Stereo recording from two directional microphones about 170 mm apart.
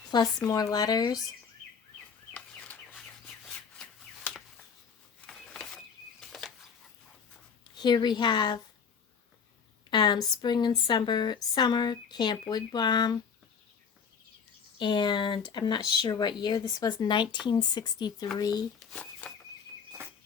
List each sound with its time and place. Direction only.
0.1 s speech: 25° left (ahead or behind)
2.3 s bird: 5° left (ahead or behind)
5.2 s a sound: 5° left (ahead or behind)
7.8 s speech: 25° left (ahead or behind)
9.9 s speech: 25° left (ahead or behind)
14.8 s speech: 25° left (ahead or behind)
19.2 s a sound: 10° left (ahead or behind)